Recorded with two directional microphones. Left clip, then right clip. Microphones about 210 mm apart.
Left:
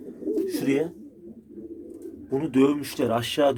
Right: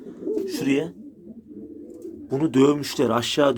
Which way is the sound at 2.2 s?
20° right (ahead or behind).